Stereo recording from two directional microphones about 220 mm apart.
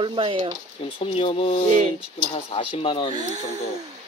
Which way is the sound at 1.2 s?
25° left (ahead or behind).